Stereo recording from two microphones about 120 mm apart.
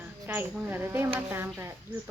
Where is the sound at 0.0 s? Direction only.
15° right (ahead or behind).